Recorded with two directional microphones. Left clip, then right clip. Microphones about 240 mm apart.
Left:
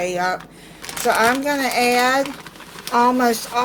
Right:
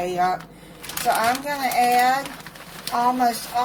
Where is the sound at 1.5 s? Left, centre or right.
Left.